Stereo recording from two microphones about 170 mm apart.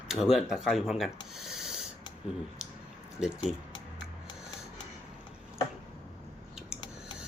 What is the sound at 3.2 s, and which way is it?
Speech, 5° right (ahead or behind).